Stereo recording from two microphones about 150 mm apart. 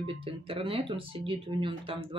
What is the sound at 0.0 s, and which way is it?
Speech, 40° right (ahead or behind).